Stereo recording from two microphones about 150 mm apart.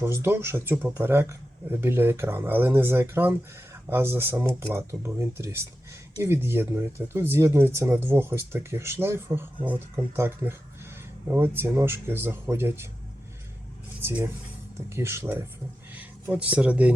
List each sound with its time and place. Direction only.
0.0 s speech: 15° right (ahead or behind)
14.0 s speech: 10° right (ahead or behind)